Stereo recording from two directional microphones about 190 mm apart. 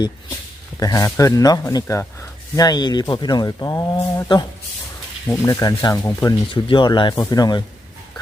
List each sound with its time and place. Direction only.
0.8 s speech: 20° left (ahead or behind)
6.5 s speech: 25° left (ahead or behind)